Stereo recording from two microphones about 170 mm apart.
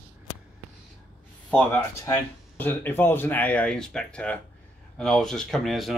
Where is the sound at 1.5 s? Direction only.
10° left (ahead or behind).